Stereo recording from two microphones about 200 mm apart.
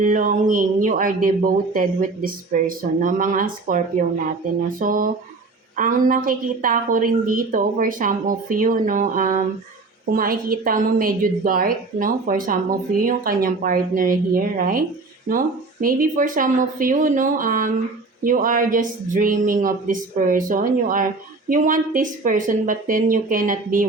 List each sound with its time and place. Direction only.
0.0 s a woman's voice: 40° right (ahead or behind)